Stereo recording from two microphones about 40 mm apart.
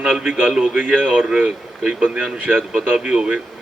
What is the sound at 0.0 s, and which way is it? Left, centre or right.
Speech, centre.